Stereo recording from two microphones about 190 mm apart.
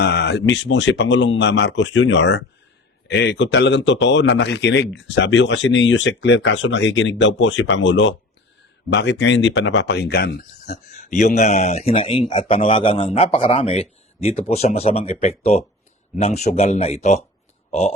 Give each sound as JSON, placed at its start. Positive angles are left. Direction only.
{"t": 0.0, "sound": "speech", "side_deg": 60}
{"t": 8.9, "sound": "speech", "side_deg": 65}
{"t": 10.7, "sound": "a man's voice", "side_deg": 40}